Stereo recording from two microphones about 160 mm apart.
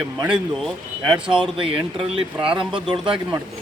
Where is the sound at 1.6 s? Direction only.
35° right (ahead or behind).